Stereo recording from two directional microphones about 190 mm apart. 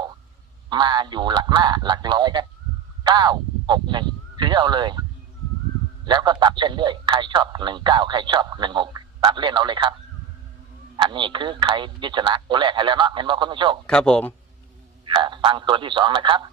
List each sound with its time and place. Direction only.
0.7 s a man's voice: 25° right (ahead or behind)
6.1 s a man's voice: 25° right (ahead or behind)
10.9 s a man's voice: 25° right (ahead or behind)
13.8 s speech: 5° left (ahead or behind)
15.0 s a man's voice: 25° right (ahead or behind)